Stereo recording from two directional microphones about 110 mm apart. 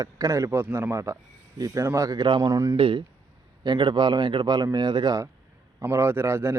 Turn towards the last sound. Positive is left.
turn(degrees=-25)  # may be behind; listen again after turning